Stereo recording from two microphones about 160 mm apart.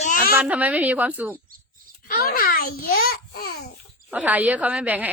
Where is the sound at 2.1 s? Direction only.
65° left (ahead or behind).